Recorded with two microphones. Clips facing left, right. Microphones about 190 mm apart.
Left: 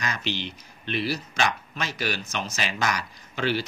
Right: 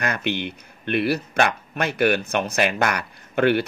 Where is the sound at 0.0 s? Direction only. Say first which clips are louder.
Right 6 dB; 60° right (ahead or behind).